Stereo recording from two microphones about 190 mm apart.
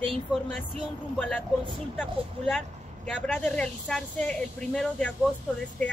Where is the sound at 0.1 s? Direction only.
5° left (ahead or behind).